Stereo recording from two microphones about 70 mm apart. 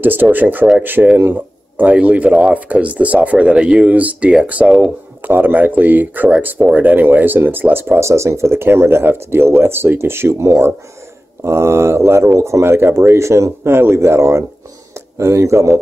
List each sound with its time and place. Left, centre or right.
0.0 s speech: right
8.0 s speech: right